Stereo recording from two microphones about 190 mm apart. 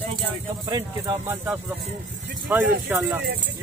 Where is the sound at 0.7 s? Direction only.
15° right (ahead or behind).